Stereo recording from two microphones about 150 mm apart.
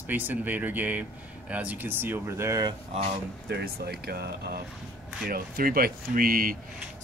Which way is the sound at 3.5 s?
90° right.